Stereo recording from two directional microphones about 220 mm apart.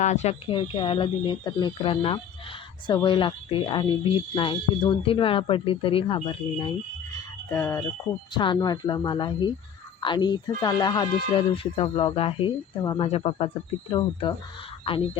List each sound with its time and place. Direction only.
0.0 s speech: 30° left (ahead or behind)